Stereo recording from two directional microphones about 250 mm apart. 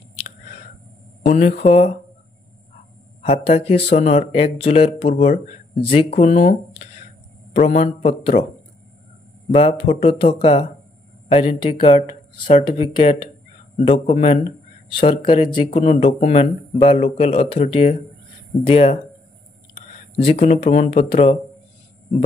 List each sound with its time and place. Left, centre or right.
1.2 s speech: left
3.2 s speech: left
9.5 s speech: left
20.2 s speech: left